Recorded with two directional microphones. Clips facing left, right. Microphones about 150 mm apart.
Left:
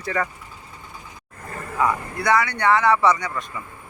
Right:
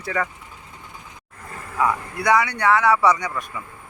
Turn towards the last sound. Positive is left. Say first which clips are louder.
# right 1 dB
turn(degrees=-10)  # may be behind; listen again after turning